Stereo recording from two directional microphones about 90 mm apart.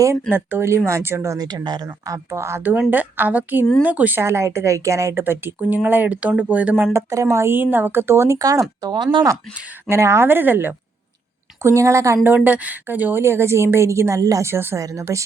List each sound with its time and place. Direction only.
0.0 s a woman's voice: 25° right (ahead or behind)
1.4 s speech: 50° right (ahead or behind)
2.0 s a woman's voice: 30° right (ahead or behind); by 6.8 s 15° right (ahead or behind)
6.9 s a woman's voice: 35° right (ahead or behind)
8.4 s speech: 40° right (ahead or behind)
9.9 s a woman's voice: 30° right (ahead or behind)
11.6 s speech: 35° right (ahead or behind)
12.2 s a woman's voice: 20° right (ahead or behind); by 15.2 s 35° right (ahead or behind)